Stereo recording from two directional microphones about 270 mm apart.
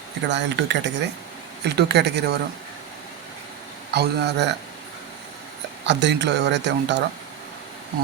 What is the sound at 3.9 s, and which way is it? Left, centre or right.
Speech, right.